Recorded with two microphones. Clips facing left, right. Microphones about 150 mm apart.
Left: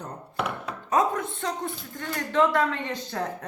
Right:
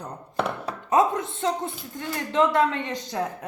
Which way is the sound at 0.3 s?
35° right (ahead or behind).